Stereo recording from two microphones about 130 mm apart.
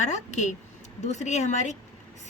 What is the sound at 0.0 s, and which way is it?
Speech, 65° left (ahead or behind).